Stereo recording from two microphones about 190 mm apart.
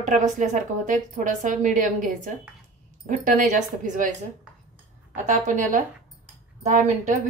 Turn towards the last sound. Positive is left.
turn(degrees=-40)  # may be behind; listen again after turning